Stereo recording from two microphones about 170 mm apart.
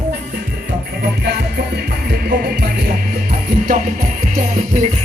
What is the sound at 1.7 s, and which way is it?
Music, 70° right (ahead or behind).